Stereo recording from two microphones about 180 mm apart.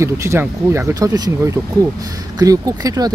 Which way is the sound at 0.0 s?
15° right (ahead or behind).